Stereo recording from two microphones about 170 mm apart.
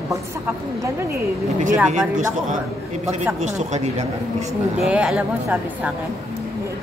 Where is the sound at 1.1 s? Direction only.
50° right (ahead or behind).